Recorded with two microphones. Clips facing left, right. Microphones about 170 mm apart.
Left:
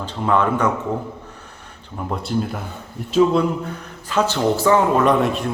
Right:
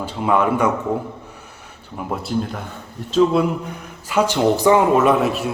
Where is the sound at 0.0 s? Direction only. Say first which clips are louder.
Right 1 dB; 10° right (ahead or behind).